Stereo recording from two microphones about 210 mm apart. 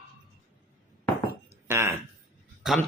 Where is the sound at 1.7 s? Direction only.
10° right (ahead or behind).